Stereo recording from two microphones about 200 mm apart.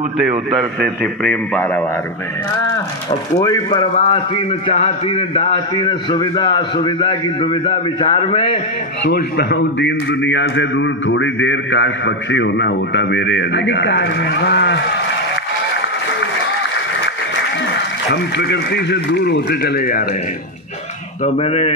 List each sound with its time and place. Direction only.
0.5 s a man's voice: centre (ahead or behind)
3.1 s a man's voice: 15° left (ahead or behind)
9.0 s a man's voice: 55° left (ahead or behind)
18.1 s a man's voice: 55° left (ahead or behind)
21.2 s speech: 30° left (ahead or behind)